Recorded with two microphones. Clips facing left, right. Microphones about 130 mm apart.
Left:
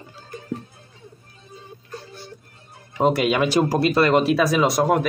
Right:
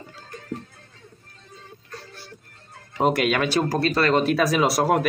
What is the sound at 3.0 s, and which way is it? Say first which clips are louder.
Speech: left 2 dB; centre (ahead or behind).